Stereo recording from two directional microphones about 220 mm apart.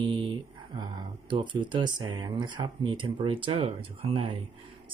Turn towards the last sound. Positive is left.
turn(degrees=-25)  # may be behind; listen again after turning